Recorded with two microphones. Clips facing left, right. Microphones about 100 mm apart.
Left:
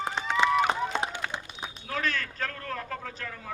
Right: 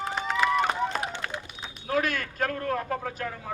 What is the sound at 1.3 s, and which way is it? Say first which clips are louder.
Run: even; 25° left (ahead or behind).